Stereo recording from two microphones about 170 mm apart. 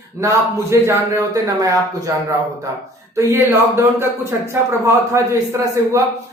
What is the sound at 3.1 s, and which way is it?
A man's voice, 15° right (ahead or behind).